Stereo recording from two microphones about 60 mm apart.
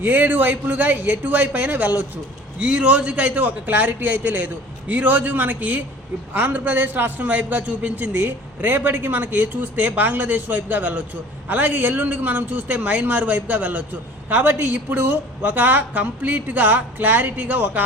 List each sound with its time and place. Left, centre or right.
0.0 s a man's voice: right